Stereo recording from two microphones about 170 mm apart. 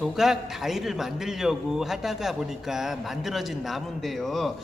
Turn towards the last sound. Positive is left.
turn(degrees=0)  # may be behind; listen again after turning